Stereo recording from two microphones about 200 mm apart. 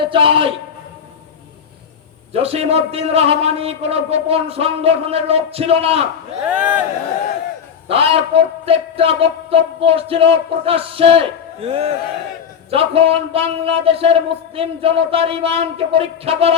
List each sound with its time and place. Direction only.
0.0 s a man's voice: 25° right (ahead or behind)
2.3 s a man's voice: 30° right (ahead or behind)
6.5 s speech: 5° right (ahead or behind)
7.9 s a man's voice: 30° right (ahead or behind)